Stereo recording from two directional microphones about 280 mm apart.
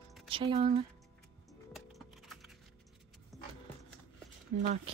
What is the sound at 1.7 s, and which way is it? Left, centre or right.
Music, centre.